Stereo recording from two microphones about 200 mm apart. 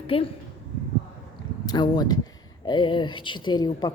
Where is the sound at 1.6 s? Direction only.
20° left (ahead or behind).